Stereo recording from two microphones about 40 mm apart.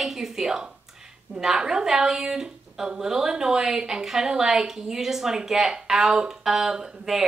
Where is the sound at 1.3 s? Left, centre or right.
Centre.